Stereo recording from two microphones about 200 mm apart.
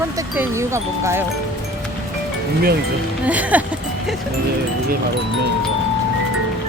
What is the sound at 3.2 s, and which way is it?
Speech, 5° right (ahead or behind).